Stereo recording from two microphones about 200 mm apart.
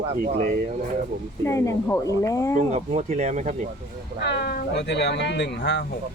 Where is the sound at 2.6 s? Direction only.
35° right (ahead or behind).